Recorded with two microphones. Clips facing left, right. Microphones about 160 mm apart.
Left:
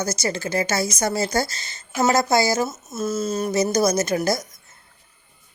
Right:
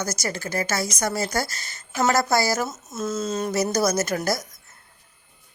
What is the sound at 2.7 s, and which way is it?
A woman's voice, 5° left (ahead or behind).